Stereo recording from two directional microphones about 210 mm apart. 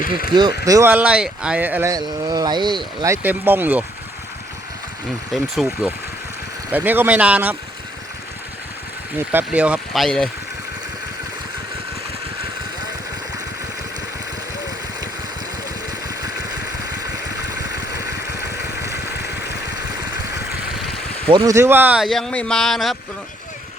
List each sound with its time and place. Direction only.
0.3 s speech: 20° right (ahead or behind)
5.3 s speech: centre (ahead or behind)
9.1 s speech: 10° right (ahead or behind)
17.6 s vehicle: 50° left (ahead or behind)
20.0 s a sound: 50° left (ahead or behind)
21.2 s speech: 20° right (ahead or behind); by 23.0 s centre (ahead or behind)